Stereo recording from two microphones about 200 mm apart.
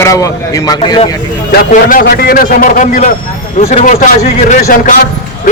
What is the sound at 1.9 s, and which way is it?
A man's voice, 50° left (ahead or behind).